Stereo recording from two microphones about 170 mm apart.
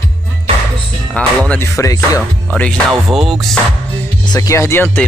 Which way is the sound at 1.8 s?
20° left (ahead or behind).